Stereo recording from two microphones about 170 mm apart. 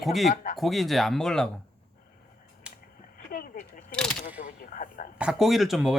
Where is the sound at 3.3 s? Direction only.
55° left (ahead or behind).